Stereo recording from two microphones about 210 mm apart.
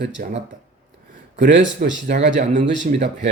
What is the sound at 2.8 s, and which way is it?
Speech, 55° right (ahead or behind).